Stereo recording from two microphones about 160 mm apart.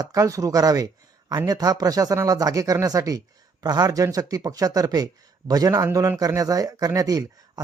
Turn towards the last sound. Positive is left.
turn(degrees=-25)  # may be behind; listen again after turning